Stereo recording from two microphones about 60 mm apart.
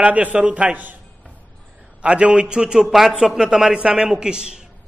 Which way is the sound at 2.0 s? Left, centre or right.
Centre.